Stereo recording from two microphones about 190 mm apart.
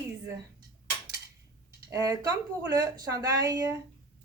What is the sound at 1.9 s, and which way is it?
Speech, 15° right (ahead or behind).